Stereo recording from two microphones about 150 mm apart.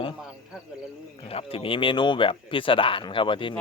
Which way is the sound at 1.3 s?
40° left (ahead or behind).